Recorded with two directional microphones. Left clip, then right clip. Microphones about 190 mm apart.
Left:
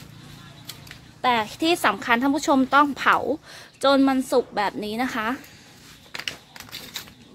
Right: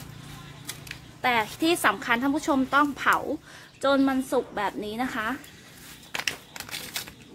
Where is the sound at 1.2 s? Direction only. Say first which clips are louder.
Left 3 dB; 40° left (ahead or behind).